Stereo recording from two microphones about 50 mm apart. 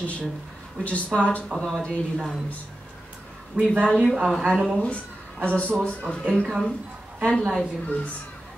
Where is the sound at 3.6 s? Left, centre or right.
Right.